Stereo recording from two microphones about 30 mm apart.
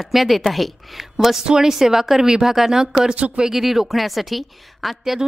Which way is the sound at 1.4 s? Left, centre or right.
Right.